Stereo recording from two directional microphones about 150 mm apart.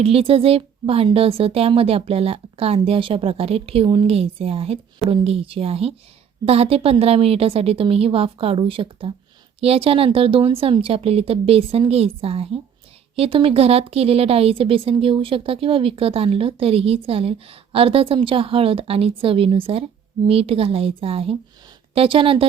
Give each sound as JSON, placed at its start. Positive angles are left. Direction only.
{"t": 0.0, "sound": "a woman's voice", "side_deg": -40}